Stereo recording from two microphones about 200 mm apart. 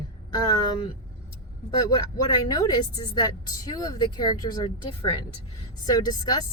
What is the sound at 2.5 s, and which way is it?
Speech, 20° left (ahead or behind).